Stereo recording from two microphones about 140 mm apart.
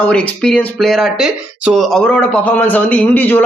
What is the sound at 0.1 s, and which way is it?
A man's voice, 5° left (ahead or behind).